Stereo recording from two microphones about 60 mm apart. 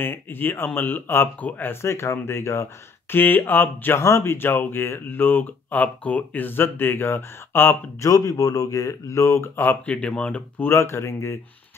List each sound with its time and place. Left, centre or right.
0.0 s speech: left
4.0 s speech: left
8.0 s speech: left
9.8 s speech: centre
10.6 s speech: left